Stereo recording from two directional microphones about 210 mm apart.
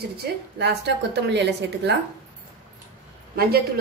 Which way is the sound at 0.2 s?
55° right (ahead or behind).